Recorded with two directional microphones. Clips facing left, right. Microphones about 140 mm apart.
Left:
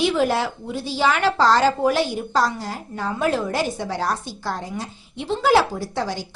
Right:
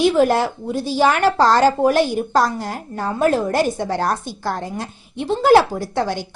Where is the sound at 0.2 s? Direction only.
45° right (ahead or behind).